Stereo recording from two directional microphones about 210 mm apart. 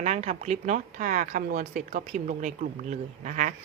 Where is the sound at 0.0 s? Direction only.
30° right (ahead or behind).